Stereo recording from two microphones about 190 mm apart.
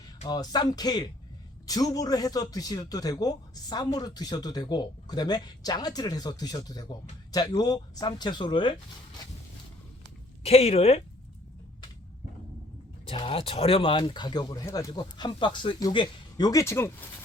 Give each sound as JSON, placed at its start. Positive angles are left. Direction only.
{"t": 0.3, "sound": "a man's voice", "side_deg": 20}
{"t": 10.4, "sound": "speech", "side_deg": 35}
{"t": 13.1, "sound": "a man's voice", "side_deg": 30}